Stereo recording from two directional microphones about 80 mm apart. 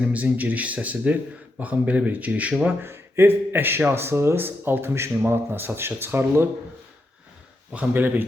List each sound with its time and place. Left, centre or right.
0.1 s speech: centre
2.8 s speech: right
7.7 s speech: centre